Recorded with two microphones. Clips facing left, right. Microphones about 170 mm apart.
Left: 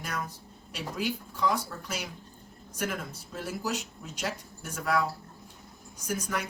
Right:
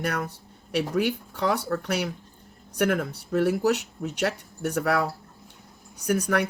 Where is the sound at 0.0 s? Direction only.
65° right (ahead or behind).